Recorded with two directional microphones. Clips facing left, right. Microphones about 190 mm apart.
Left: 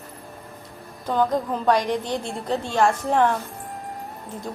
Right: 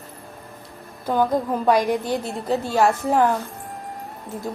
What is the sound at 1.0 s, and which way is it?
A woman's voice, 10° right (ahead or behind).